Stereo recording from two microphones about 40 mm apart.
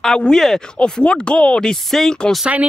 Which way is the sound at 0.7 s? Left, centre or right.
Left.